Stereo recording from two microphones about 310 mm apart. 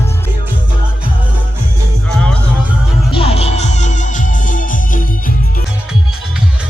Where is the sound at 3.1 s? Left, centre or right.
Centre.